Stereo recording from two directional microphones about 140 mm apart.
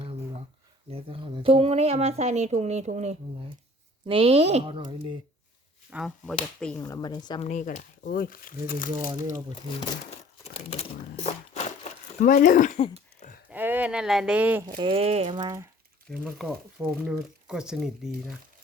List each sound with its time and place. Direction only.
0.9 s speech: 40° right (ahead or behind)
4.0 s speech: 40° right (ahead or behind)
6.1 s speech: 5° left (ahead or behind)
6.8 s speech: 25° left (ahead or behind)
7.4 s speech: 60° left (ahead or behind); by 8.8 s 90° left
10.4 s speech: 45° left (ahead or behind)
11.3 s a sound: 60° left (ahead or behind)
13.5 s speech: 10° right (ahead or behind)
14.8 s speech: 40° right (ahead or behind)
15.4 s speech: 25° right (ahead or behind)
16.2 s speech: 5° right (ahead or behind)